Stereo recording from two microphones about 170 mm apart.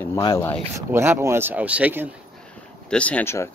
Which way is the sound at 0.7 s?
15° right (ahead or behind).